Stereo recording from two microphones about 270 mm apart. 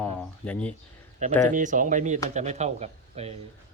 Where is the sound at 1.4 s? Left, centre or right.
Right.